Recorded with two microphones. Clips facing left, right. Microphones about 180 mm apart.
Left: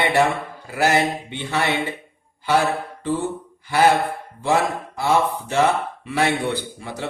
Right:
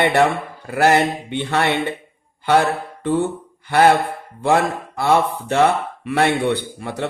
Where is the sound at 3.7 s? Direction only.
55° right (ahead or behind).